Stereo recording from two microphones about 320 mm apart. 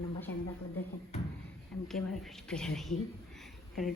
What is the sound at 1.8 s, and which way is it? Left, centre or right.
Speech, centre.